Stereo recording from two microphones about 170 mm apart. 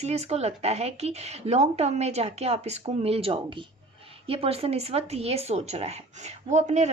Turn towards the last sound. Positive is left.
turn(degrees=-40)  # may be behind; listen again after turning